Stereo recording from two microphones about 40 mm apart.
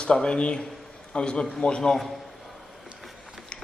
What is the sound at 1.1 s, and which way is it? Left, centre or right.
Speech, left.